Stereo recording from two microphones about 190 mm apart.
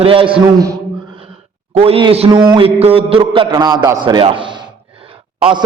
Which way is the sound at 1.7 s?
30° right (ahead or behind).